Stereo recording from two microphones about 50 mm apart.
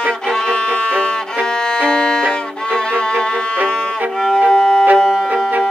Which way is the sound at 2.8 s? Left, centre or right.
Centre.